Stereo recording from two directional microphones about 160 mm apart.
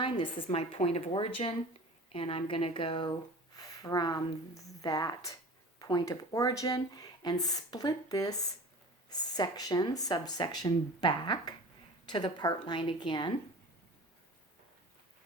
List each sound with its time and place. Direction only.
0.0 s a woman's voice: 30° left (ahead or behind)